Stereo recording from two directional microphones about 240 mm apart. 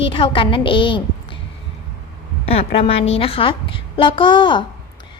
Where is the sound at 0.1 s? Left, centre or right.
Left.